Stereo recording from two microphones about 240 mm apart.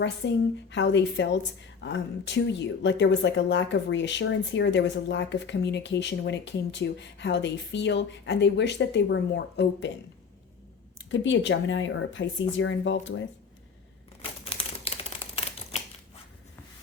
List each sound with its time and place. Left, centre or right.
0.2 s speech: left
10.9 s speech: left
14.2 s typewriter: left